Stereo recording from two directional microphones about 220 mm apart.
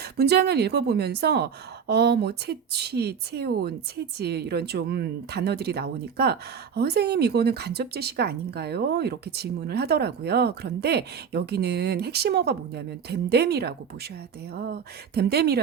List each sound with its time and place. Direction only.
0.0 s speech: 45° right (ahead or behind)